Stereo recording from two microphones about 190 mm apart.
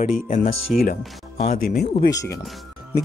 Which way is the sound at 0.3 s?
45° left (ahead or behind).